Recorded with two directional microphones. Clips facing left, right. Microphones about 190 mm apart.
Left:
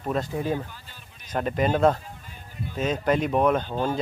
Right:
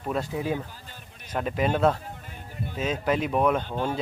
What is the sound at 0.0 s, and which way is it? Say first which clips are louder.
A man's voice: left 1 dB; 5° right (ahead or behind).